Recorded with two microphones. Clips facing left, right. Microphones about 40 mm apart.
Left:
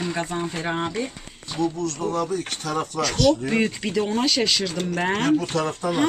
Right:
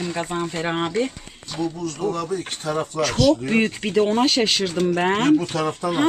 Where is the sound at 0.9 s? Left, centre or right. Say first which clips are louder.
Right 5 dB; right.